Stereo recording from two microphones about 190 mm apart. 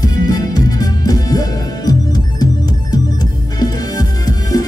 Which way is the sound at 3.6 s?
20° left (ahead or behind).